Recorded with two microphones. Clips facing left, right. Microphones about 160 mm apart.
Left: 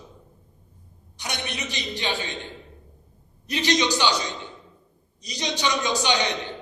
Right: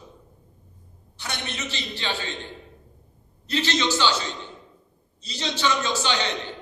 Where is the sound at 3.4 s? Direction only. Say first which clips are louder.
Left 1 dB; 15° left (ahead or behind).